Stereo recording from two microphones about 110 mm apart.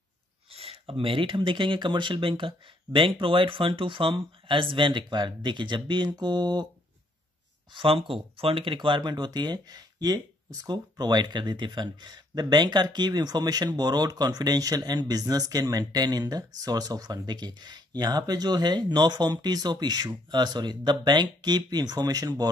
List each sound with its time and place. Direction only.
0.5 s speech: 60° right (ahead or behind); by 6.7 s 40° right (ahead or behind)
7.7 s speech: 55° right (ahead or behind); by 22.5 s 35° right (ahead or behind)